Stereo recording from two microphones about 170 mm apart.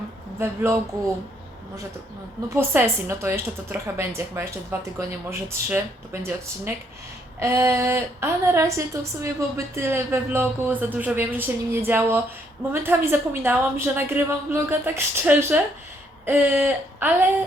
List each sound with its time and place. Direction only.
0.3 s speech: 15° right (ahead or behind)
2.5 s speech: 15° right (ahead or behind)
7.3 s speech: 15° right (ahead or behind)